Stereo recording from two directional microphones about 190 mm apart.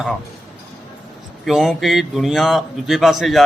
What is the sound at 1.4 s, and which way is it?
A man's voice, centre (ahead or behind).